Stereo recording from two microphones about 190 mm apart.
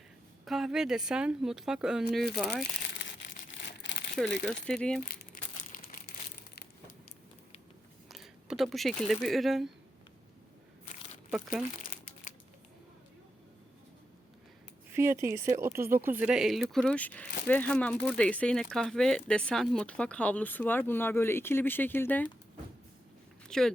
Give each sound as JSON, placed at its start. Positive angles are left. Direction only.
{"t": 0.4, "sound": "speech", "side_deg": 0}
{"t": 3.0, "sound": "crumpling", "side_deg": 70}
{"t": 4.6, "sound": "speech", "side_deg": 5}
{"t": 5.0, "sound": "crumpling", "side_deg": 50}
{"t": 8.1, "sound": "speech", "side_deg": 0}
{"t": 11.3, "sound": "speech", "side_deg": -5}
{"t": 11.8, "sound": "crumpling", "side_deg": 45}
{"t": 14.9, "sound": "speech", "side_deg": -15}
{"t": 23.5, "sound": "speech", "side_deg": 0}